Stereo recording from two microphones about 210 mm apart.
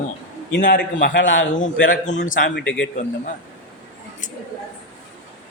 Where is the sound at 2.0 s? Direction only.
35° left (ahead or behind).